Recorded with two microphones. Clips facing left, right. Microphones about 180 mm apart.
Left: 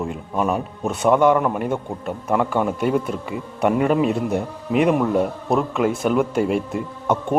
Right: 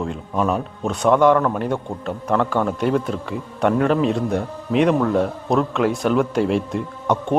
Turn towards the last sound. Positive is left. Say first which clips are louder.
# even
turn(degrees=5)  # may be behind; listen again after turning